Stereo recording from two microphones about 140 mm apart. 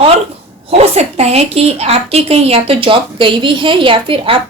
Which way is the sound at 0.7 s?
50° right (ahead or behind).